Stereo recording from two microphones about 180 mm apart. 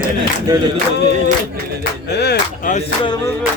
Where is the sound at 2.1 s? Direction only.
65° left (ahead or behind).